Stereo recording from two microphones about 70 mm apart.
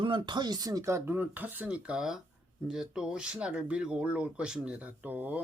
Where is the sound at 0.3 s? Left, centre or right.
Right.